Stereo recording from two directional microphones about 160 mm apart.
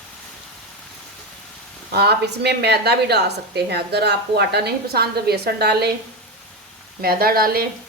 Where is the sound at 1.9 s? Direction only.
90° right.